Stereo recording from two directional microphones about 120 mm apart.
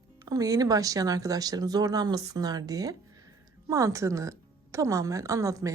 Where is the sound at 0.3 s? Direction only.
30° right (ahead or behind).